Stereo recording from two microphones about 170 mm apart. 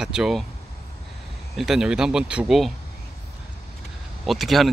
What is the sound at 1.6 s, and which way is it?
Speech, 5° right (ahead or behind).